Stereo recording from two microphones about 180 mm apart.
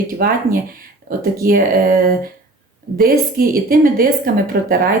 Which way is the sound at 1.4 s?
55° right (ahead or behind).